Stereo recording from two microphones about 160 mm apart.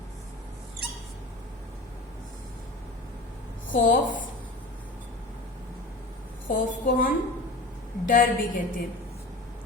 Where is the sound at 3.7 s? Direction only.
55° left (ahead or behind).